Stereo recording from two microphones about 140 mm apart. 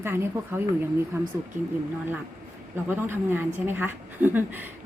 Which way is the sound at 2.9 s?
15° right (ahead or behind).